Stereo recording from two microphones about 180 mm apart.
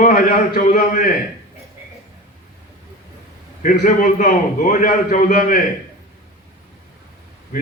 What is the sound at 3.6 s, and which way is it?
A man's voice, 45° left (ahead or behind).